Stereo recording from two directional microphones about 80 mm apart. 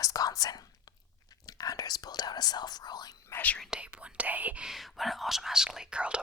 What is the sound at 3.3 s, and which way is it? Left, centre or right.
Speech, left.